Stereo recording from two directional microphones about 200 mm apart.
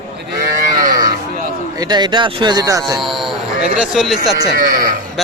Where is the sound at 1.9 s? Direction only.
20° right (ahead or behind).